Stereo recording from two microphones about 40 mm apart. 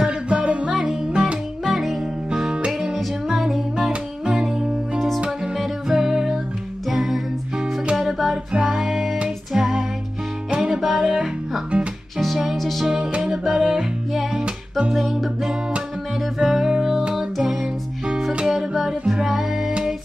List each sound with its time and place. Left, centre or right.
0.0 s music: right
0.7 s music: centre
2.5 s music: right
3.3 s music: centre
3.9 s music: centre
4.9 s music: centre
5.6 s music: centre
10.5 s music: right
12.8 s music: centre
15.0 s music: centre